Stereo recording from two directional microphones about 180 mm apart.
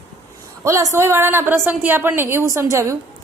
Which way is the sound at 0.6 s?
15° right (ahead or behind).